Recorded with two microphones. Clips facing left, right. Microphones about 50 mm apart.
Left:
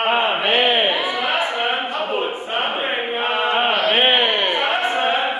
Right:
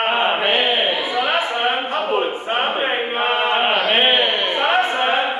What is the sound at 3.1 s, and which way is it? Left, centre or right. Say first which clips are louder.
Chant: right 2 dB; right.